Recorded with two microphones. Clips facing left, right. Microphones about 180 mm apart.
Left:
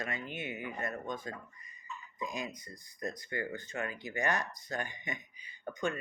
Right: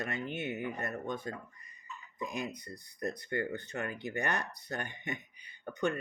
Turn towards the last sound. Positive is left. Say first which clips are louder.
# right 2 dB
turn(degrees=-60)  # may be behind; listen again after turning